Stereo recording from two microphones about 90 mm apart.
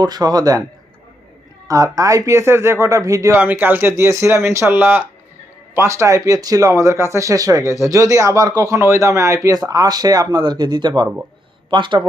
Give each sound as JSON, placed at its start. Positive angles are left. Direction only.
{"t": 0.0, "sound": "speech", "side_deg": -45}
{"t": 1.6, "sound": "speech", "side_deg": -40}
{"t": 3.3, "sound": "speech", "side_deg": -20}
{"t": 9.6, "sound": "speech", "side_deg": -45}